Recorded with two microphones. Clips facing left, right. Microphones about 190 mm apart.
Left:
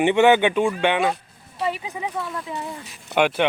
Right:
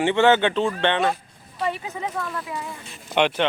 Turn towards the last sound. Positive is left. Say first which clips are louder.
# left 1 dB
turn(degrees=10)  # may be behind; listen again after turning